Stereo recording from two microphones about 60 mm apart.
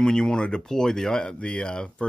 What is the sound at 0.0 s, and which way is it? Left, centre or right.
Speech, centre.